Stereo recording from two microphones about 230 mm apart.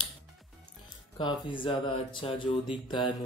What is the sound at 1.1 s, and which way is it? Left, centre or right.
Speech, left.